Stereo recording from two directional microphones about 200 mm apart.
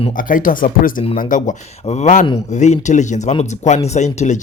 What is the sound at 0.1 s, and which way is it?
Speech, 40° left (ahead or behind).